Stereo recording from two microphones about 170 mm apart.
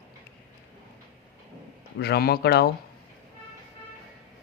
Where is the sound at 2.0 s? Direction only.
70° left (ahead or behind).